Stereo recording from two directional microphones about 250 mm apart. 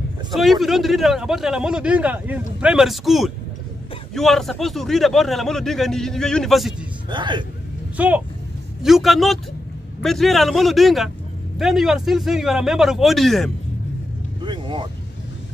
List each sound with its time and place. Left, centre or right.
0.3 s speech: centre
7.1 s speech: centre
8.0 s speech: centre
14.4 s vehicle: centre